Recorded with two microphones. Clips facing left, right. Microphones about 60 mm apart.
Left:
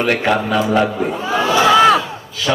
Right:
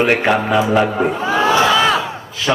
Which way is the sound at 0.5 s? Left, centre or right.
Centre.